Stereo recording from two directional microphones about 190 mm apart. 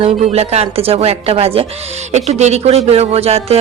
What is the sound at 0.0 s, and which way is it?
Speech, 35° right (ahead or behind).